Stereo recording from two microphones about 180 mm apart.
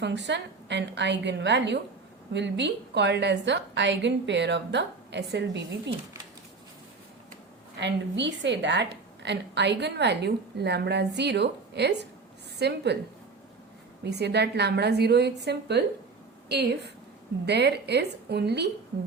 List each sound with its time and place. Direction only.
0.0 s a woman's voice: 75° right (ahead or behind)
7.8 s a woman's voice: 75° right (ahead or behind)
14.0 s a woman's voice: 70° right (ahead or behind)